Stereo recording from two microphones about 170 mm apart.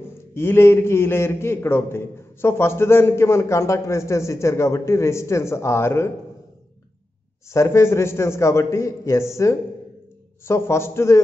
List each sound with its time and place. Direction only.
0.3 s a man's voice: 15° left (ahead or behind)
7.4 s a man's voice: 15° left (ahead or behind)